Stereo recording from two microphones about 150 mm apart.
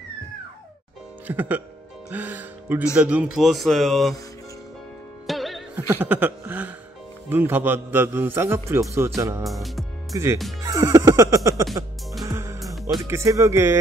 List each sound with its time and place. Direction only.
1.2 s speech: 10° right (ahead or behind)
2.0 s music: 10° right (ahead or behind)
2.9 s speech: 10° right (ahead or behind)
5.2 s music: centre (ahead or behind)
5.9 s a man's voice: 10° right (ahead or behind)
9.4 s speech: centre (ahead or behind)
10.1 s speech: 20° right (ahead or behind)
10.6 s music: 20° right (ahead or behind)
13.0 s speech: 20° right (ahead or behind)